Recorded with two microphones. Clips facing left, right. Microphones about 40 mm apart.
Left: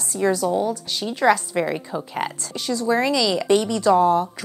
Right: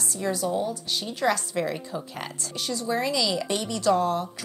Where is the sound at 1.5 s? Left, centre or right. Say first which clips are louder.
Left 5 dB; centre.